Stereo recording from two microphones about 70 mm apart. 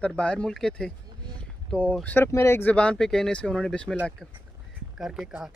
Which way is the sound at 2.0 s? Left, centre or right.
Left.